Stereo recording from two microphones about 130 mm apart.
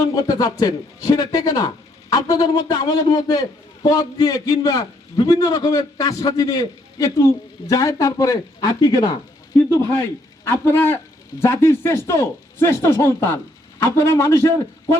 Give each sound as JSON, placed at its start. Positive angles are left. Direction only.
{"t": 0.0, "sound": "a man's voice", "side_deg": 30}
{"t": 10.4, "sound": "speech", "side_deg": 15}